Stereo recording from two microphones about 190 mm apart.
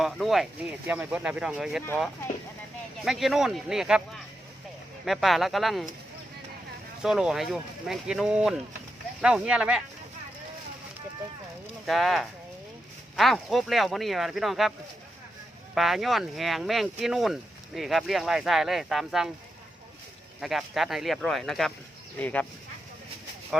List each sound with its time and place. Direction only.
0.0 s speech: centre (ahead or behind)
3.0 s speech: centre (ahead or behind)
5.0 s speech: centre (ahead or behind)
7.0 s speech: 5° right (ahead or behind)
11.9 s speech: centre (ahead or behind)
15.7 s speech: centre (ahead or behind)
20.4 s speech: centre (ahead or behind)